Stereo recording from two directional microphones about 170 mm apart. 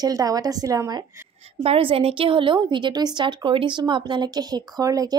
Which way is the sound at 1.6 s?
35° right (ahead or behind).